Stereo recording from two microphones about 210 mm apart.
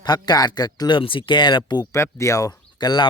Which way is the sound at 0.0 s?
20° left (ahead or behind).